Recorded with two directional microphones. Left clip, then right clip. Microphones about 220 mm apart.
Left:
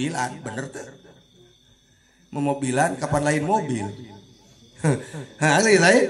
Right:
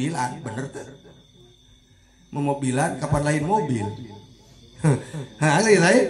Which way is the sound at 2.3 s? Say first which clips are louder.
Even; 40° left (ahead or behind).